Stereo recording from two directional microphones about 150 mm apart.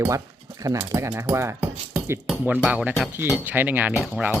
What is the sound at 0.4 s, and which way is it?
Speech, 20° right (ahead or behind).